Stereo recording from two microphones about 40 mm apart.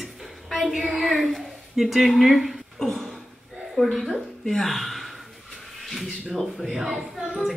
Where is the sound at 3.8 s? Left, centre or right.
Centre.